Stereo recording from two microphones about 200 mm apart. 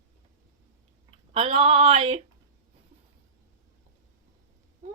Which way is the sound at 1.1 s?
30° right (ahead or behind).